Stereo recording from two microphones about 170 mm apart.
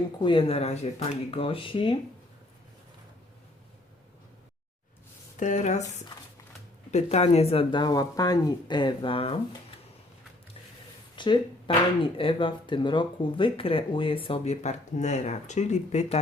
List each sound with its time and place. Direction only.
0.2 s speech: 30° left (ahead or behind)
5.4 s speech: 45° left (ahead or behind)
6.9 s speech: 40° left (ahead or behind)
11.2 s speech: 25° left (ahead or behind)